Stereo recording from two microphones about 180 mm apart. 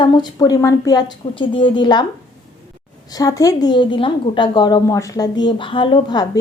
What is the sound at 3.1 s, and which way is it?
A woman's voice, 20° left (ahead or behind).